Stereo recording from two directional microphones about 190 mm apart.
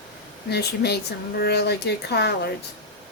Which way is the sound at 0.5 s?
60° left (ahead or behind).